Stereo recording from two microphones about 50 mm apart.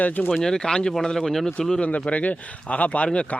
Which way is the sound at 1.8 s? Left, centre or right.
Left.